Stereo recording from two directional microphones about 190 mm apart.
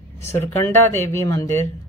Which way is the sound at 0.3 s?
15° left (ahead or behind).